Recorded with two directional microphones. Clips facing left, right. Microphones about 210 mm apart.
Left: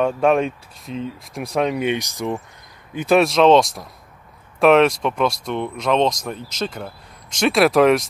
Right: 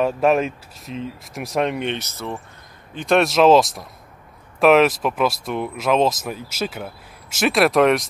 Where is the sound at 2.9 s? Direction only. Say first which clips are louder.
Left 1 dB; 5° left (ahead or behind).